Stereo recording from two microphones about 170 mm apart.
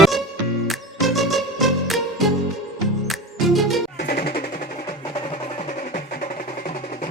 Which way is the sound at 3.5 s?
Centre (ahead or behind).